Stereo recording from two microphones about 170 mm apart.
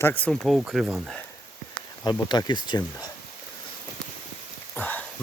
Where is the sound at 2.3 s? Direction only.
25° left (ahead or behind).